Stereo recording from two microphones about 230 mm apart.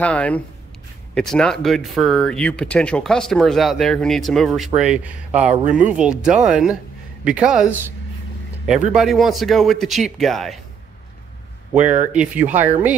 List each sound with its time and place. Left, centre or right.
0.0 s speech: centre
11.7 s speech: right
12.1 s speech: centre